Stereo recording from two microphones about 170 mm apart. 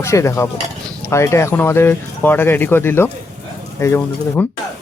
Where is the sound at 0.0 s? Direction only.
15° left (ahead or behind).